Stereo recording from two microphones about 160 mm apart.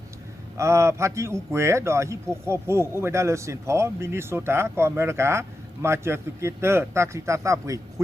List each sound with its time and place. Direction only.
0.5 s a man's voice: 15° right (ahead or behind)